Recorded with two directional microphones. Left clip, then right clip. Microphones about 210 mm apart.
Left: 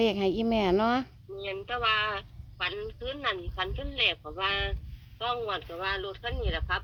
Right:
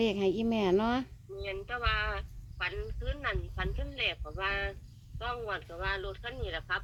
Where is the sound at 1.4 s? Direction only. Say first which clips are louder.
Left 5 dB; 50° left (ahead or behind).